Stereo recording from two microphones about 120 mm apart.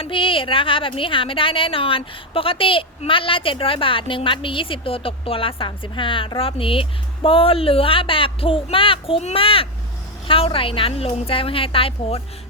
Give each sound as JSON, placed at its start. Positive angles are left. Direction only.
{"t": 0.0, "sound": "a woman's voice", "side_deg": 45}